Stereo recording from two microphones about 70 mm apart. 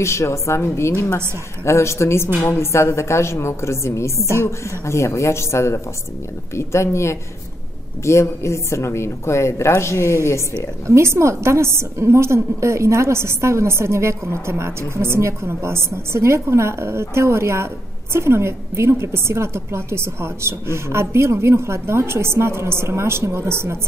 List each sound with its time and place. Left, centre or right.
0.0 s a woman's voice: left
10.5 s a woman's voice: right